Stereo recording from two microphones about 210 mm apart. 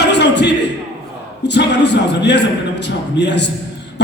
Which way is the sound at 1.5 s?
55° left (ahead or behind).